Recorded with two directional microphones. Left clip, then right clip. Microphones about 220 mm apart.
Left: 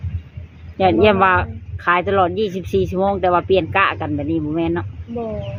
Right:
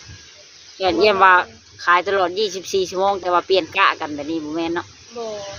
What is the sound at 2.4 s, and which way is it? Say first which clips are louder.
Speech: left 1 dB; 15° left (ahead or behind).